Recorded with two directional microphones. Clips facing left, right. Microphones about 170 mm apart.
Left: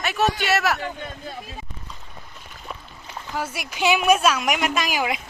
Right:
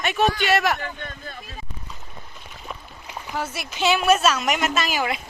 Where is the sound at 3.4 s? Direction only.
10° left (ahead or behind).